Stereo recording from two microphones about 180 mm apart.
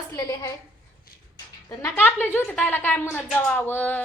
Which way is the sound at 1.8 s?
10° left (ahead or behind).